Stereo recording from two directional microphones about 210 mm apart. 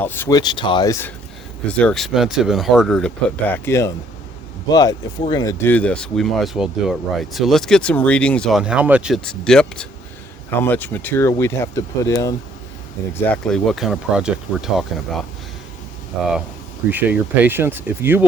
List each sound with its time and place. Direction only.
0.0 s speech: 10° left (ahead or behind)
16.9 s speech: 10° right (ahead or behind)